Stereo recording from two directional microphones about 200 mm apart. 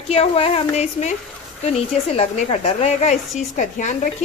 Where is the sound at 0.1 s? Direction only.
30° left (ahead or behind).